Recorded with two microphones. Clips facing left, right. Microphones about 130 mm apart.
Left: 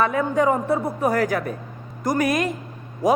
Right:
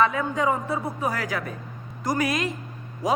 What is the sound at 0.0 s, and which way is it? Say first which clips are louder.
A woman's voice: left 3 dB; 50° left (ahead or behind).